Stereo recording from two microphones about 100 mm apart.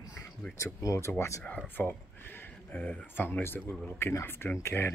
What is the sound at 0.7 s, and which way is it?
Speech, 30° left (ahead or behind).